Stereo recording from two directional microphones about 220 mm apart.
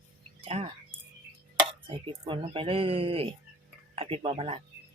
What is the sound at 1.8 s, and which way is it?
Speech, 25° right (ahead or behind).